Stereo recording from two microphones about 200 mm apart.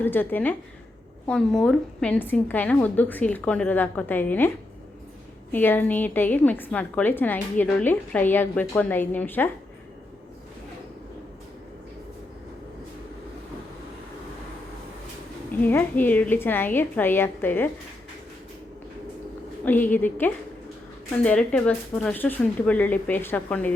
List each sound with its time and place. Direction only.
0.0 s a woman's voice: 10° left (ahead or behind)
15.6 s a woman's voice: 10° left (ahead or behind)
19.6 s a woman's voice: 10° left (ahead or behind)